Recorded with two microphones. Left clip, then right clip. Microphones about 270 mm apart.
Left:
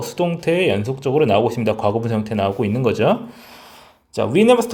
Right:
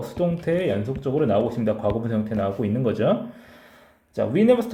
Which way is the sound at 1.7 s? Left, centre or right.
Left.